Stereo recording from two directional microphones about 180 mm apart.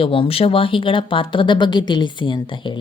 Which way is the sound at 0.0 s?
30° left (ahead or behind).